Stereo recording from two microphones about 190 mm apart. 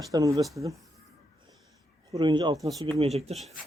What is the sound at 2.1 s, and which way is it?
Speech, 25° right (ahead or behind).